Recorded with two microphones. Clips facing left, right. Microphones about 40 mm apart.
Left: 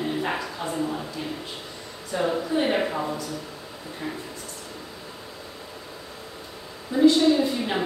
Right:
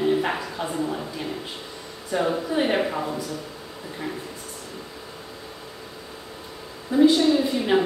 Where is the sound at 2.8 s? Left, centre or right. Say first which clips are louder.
Right 1 dB; centre.